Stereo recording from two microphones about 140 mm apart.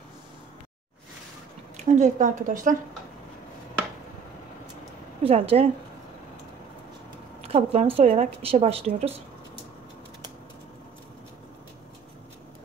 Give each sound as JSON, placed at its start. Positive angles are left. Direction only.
{"t": 1.9, "sound": "a woman's voice", "side_deg": -60}
{"t": 5.2, "sound": "a woman's voice", "side_deg": -45}
{"t": 7.4, "sound": "a woman's voice", "side_deg": -45}